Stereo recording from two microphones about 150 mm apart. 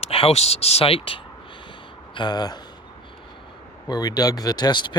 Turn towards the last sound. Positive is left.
turn(degrees=30)  # may be behind; listen again after turning